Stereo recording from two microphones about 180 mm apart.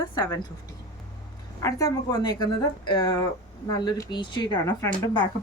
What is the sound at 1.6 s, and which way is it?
Speech, 20° left (ahead or behind).